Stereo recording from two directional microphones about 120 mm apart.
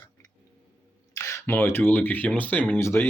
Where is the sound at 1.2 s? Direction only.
25° left (ahead or behind).